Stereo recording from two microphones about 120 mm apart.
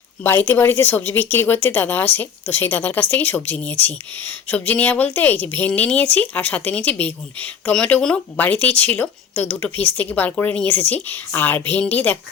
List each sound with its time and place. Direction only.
0.2 s speech: 15° left (ahead or behind)